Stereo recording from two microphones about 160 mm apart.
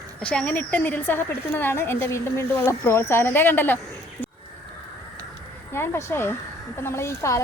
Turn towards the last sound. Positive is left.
turn(degrees=20)  # may be behind; listen again after turning